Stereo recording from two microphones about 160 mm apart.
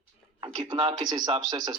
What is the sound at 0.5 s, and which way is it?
Speech, 30° right (ahead or behind).